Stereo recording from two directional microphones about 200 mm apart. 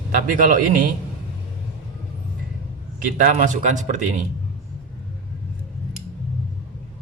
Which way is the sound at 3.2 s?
40° right (ahead or behind).